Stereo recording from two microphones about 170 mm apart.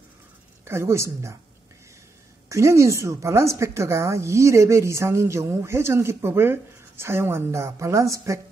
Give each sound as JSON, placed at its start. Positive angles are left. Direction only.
{"t": 0.7, "sound": "a woman's voice", "side_deg": -15}
{"t": 2.5, "sound": "a woman's voice", "side_deg": -15}